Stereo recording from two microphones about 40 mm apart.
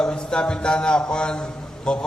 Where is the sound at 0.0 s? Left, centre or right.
Left.